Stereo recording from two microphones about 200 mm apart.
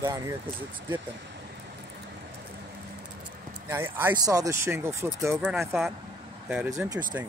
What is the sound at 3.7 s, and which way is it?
Speech, 10° right (ahead or behind).